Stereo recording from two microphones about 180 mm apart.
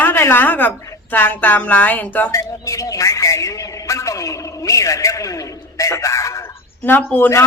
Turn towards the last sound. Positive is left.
turn(degrees=15)  # may be behind; listen again after turning